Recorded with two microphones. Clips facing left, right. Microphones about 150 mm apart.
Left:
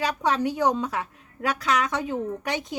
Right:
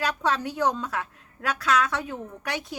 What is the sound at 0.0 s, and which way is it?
A woman's voice, 15° left (ahead or behind).